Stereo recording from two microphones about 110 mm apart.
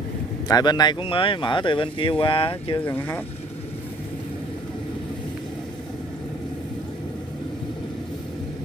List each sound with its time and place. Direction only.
0.5 s speech: 40° left (ahead or behind); by 2.8 s 55° left (ahead or behind)
2.8 s speech: 15° left (ahead or behind)